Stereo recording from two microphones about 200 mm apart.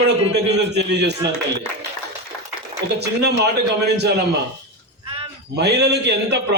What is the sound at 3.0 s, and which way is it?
Speech, 55° right (ahead or behind).